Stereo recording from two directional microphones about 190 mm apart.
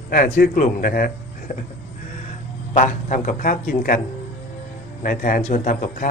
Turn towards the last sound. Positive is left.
turn(degrees=45)  # may be behind; listen again after turning